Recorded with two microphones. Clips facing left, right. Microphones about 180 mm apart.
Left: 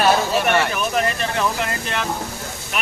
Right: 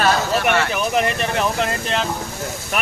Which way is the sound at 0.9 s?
20° right (ahead or behind).